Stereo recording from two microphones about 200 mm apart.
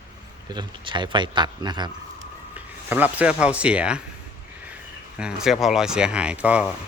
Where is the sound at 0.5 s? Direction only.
20° right (ahead or behind).